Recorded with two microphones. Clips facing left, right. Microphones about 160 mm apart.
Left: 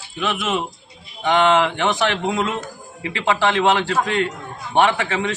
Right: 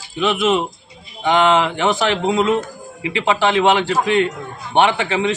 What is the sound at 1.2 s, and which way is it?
Speech, 5° right (ahead or behind).